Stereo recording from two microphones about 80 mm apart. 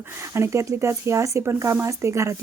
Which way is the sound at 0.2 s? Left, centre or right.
Right.